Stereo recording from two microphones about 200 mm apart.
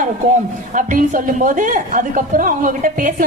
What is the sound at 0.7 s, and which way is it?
A woman's voice, 40° right (ahead or behind).